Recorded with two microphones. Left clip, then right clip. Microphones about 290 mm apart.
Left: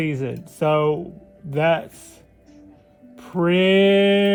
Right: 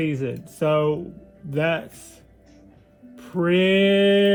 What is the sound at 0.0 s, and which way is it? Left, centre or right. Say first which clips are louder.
Speech: even; left.